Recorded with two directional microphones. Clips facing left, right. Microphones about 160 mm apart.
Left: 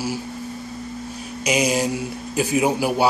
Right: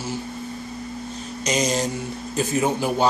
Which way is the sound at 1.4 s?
10° left (ahead or behind).